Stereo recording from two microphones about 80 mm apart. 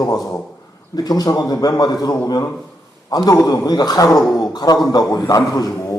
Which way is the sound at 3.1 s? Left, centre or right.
Left.